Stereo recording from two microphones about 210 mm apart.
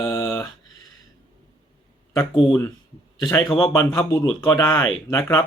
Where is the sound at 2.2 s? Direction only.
20° left (ahead or behind).